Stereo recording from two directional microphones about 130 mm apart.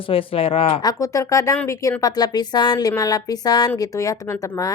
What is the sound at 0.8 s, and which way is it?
Speech, 30° left (ahead or behind).